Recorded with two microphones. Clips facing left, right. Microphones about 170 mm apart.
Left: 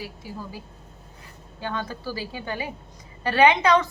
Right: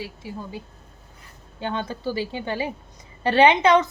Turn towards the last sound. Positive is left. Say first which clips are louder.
# right 2 dB
turn(degrees=-25)  # may be behind; listen again after turning